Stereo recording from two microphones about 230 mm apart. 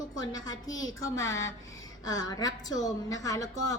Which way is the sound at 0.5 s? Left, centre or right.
Left.